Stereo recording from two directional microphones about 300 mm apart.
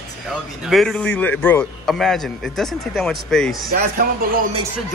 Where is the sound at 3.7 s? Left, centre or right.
Right.